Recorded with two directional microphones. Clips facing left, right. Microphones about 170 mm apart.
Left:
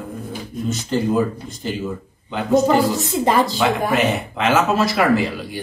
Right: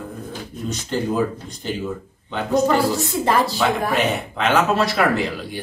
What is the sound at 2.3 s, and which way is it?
Speech, 5° left (ahead or behind).